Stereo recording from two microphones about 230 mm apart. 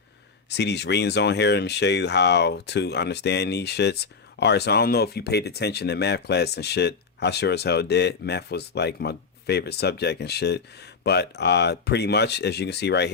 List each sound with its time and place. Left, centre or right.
0.5 s speech: left